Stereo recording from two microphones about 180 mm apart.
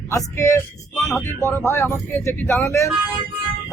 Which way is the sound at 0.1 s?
15° left (ahead or behind).